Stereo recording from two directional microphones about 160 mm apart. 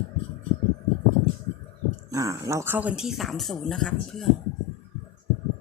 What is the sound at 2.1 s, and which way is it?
Speech, 20° right (ahead or behind).